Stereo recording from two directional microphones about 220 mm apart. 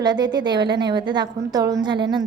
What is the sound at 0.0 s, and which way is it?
A woman's voice, 20° right (ahead or behind).